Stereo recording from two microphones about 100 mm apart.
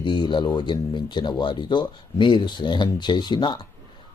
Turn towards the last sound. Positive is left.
turn(degrees=50)  # may be behind; listen again after turning